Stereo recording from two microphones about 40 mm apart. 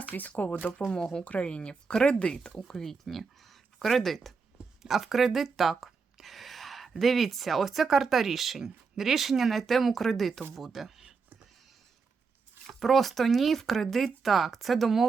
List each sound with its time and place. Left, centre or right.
0.1 s speech: left
0.9 s speech: centre
1.2 s speech: left
2.6 s speech: centre
4.8 s speech: centre
12.6 s speech: centre